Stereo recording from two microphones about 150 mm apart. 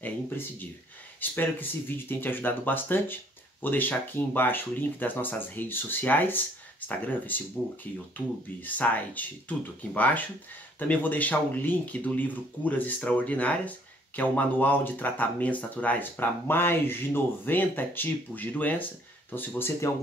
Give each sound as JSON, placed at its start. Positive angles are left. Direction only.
{"t": 0.0, "sound": "speech", "side_deg": 10}